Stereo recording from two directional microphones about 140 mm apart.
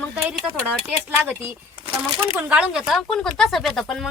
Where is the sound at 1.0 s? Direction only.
15° right (ahead or behind).